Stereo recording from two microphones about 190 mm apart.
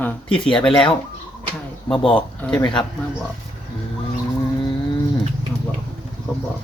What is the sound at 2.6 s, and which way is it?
Speech, 25° left (ahead or behind).